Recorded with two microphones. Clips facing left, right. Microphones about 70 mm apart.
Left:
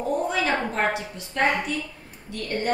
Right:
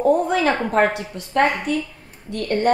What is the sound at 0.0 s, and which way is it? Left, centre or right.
A woman's voice, right.